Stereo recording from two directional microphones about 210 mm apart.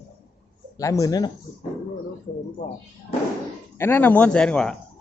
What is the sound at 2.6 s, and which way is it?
Speech, 40° left (ahead or behind).